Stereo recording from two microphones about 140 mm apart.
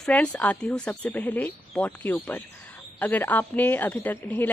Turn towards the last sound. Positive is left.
turn(degrees=10)  # may be behind; listen again after turning